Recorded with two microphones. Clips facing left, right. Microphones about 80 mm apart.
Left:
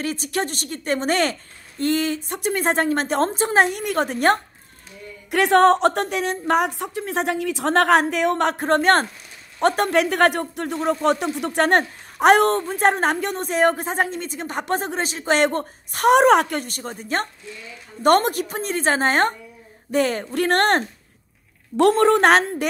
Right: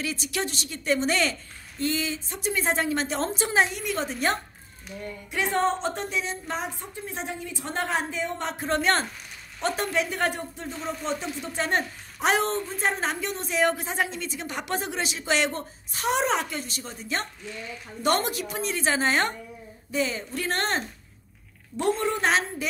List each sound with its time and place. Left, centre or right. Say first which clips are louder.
0.0 s speech: left 5 dB; left
5.3 s a woman's voice: left 10 dB; left
19.9 s speech: left 7 dB; left
21.7 s a woman's voice: left 10 dB; left